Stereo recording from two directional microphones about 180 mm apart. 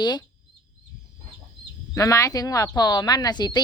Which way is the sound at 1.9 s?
20° left (ahead or behind).